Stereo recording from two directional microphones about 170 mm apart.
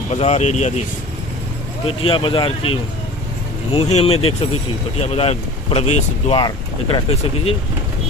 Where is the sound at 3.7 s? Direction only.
40° left (ahead or behind).